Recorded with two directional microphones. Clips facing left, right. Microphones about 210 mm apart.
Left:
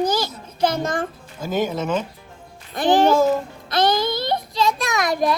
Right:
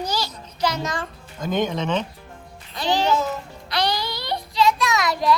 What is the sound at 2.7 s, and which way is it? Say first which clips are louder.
Speech: left 5 dB; 50° left (ahead or behind).